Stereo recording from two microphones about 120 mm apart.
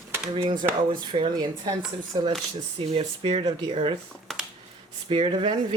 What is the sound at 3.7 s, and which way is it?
Speech, 60° right (ahead or behind).